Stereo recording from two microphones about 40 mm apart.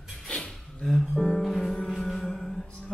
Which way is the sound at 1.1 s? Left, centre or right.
Centre.